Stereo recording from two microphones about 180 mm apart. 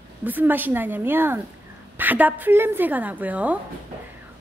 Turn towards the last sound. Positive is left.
turn(degrees=-10)  # may be behind; listen again after turning